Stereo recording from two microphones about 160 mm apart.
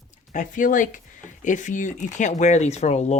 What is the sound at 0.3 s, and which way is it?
Speech, 55° left (ahead or behind).